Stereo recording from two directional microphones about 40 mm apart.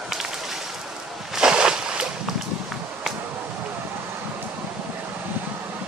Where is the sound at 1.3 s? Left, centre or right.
Centre.